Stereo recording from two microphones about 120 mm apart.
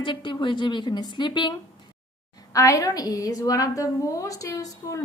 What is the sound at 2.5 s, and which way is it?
A woman's voice, 30° left (ahead or behind).